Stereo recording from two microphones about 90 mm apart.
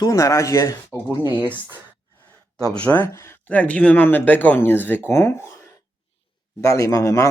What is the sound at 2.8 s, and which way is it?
Speech, 20° left (ahead or behind).